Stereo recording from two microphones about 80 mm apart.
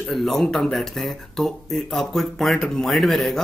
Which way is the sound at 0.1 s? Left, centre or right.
Centre.